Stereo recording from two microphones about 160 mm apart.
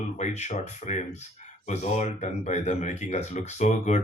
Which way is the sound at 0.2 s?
45° left (ahead or behind).